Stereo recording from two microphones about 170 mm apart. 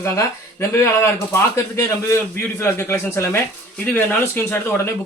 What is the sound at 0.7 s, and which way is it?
Speech, 15° left (ahead or behind).